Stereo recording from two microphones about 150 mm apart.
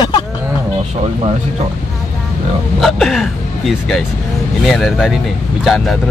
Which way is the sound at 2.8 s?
Centre (ahead or behind).